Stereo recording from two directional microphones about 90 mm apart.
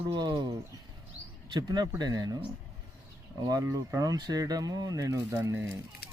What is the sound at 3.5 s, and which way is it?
Speech, 45° right (ahead or behind).